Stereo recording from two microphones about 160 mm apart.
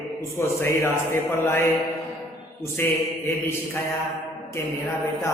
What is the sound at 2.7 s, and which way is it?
A man's voice, 15° left (ahead or behind).